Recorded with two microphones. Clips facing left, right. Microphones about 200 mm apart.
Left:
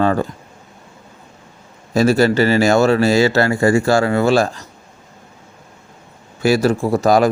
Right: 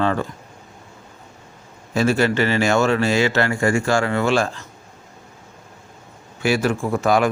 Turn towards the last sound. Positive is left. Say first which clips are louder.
# left 4 dB
turn(degrees=35)  # may be behind; listen again after turning